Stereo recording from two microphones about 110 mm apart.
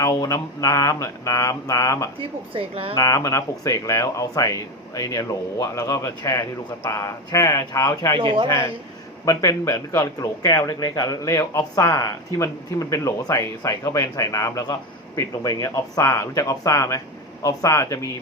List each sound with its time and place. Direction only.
0.0 s a sound: 30° left (ahead or behind)
2.1 s a woman's voice: 55° right (ahead or behind)
2.9 s speech: 30° left (ahead or behind)
8.2 s a man's voice: 50° right (ahead or behind)
9.2 s speech: 30° left (ahead or behind)